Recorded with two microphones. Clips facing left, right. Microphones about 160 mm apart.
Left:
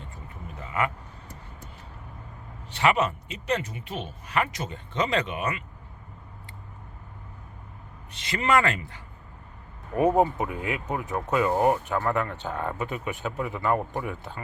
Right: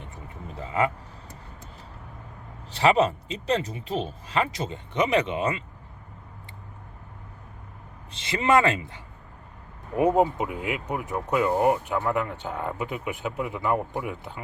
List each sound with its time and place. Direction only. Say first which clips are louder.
0.5 s speech: right 3 dB; 30° right (ahead or behind)
2.6 s speech: right 3 dB; 30° right (ahead or behind)
4.9 s speech: right 3 dB; 20° right (ahead or behind)
8.1 s speech: right 2 dB; 25° right (ahead or behind)